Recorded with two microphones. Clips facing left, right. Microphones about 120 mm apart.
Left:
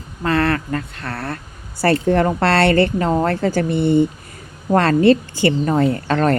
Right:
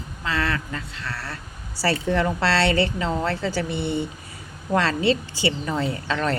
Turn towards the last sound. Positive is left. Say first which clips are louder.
# left 8 dB
turn(degrees=50)  # may be behind; listen again after turning